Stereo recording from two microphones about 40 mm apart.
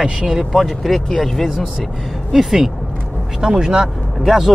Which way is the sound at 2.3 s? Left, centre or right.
Centre.